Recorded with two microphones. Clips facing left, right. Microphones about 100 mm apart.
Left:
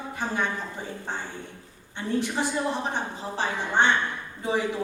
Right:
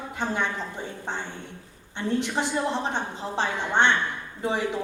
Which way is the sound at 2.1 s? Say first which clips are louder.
Even; 20° right (ahead or behind).